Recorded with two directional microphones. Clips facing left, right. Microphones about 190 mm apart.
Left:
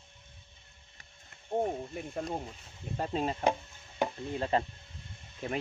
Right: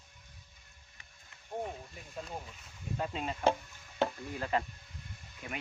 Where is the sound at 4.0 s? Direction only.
25° left (ahead or behind).